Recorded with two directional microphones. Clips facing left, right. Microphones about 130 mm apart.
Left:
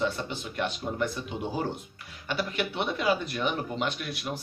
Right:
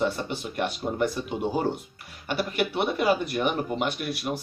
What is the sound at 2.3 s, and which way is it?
Speech, 50° right (ahead or behind).